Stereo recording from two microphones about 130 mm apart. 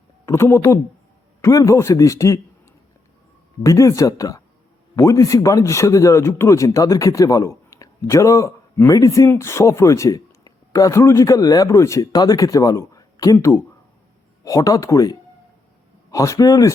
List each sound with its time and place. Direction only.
0.3 s speech: 20° left (ahead or behind)
3.6 s speech: 25° left (ahead or behind)
16.1 s speech: 25° left (ahead or behind)